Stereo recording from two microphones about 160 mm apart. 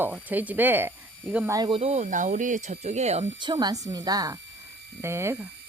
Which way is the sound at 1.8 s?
45° right (ahead or behind).